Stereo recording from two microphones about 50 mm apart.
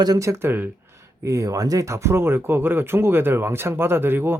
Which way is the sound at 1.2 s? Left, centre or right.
Right.